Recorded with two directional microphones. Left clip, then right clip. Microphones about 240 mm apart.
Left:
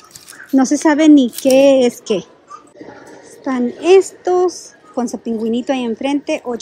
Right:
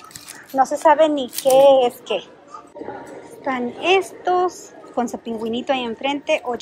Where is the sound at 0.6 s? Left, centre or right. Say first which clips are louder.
Even; left.